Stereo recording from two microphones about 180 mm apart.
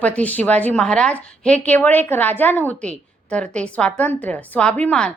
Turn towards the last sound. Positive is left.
turn(degrees=5)  # may be behind; listen again after turning